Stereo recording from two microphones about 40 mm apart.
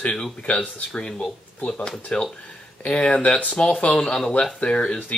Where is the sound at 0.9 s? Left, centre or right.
Centre.